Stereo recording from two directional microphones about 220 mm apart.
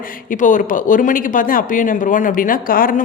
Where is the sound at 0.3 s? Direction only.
35° left (ahead or behind).